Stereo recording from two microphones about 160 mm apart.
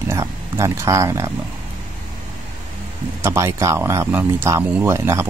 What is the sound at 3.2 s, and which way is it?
Speech, 15° right (ahead or behind).